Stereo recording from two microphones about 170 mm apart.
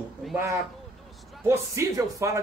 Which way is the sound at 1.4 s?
15° right (ahead or behind).